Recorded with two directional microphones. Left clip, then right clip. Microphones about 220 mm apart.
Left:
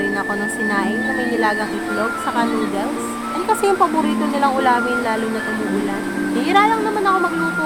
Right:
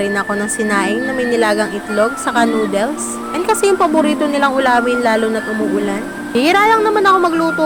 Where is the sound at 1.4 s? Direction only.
20° right (ahead or behind).